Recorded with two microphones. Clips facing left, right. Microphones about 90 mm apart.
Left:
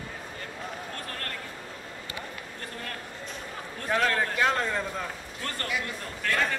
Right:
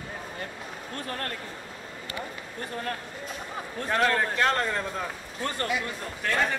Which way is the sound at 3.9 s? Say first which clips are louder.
Right 1 dB; centre (ahead or behind).